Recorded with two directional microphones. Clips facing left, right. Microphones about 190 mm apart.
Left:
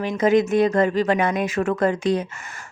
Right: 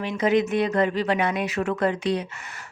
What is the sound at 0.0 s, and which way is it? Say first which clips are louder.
A woman's voice: left 3 dB; 45° left (ahead or behind).